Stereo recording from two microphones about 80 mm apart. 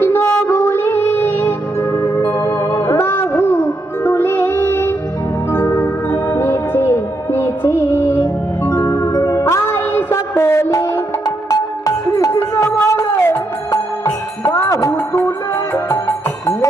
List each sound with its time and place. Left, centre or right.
0.0 s music: left
1.9 s music: left
2.5 s music: left
8.9 s music: left
9.6 s child singing: left
11.4 s music: left
12.3 s music: left
14.0 s music: left
14.7 s music: left
15.7 s music: left